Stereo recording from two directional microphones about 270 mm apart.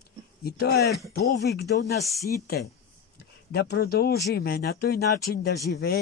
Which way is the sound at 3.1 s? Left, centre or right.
Left.